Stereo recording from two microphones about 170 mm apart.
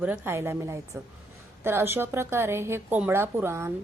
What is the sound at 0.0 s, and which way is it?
Speech, 10° right (ahead or behind).